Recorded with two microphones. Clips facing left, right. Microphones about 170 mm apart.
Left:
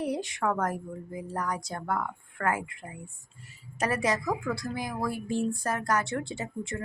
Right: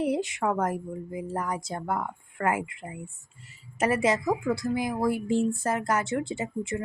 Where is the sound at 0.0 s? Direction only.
20° right (ahead or behind).